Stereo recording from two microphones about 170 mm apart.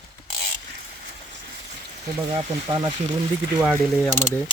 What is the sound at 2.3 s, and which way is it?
Speech, 30° right (ahead or behind).